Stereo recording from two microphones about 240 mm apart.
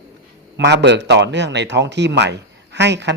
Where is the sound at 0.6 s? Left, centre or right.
Right.